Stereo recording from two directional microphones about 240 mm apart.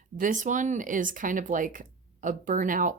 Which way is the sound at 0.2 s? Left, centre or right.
Right.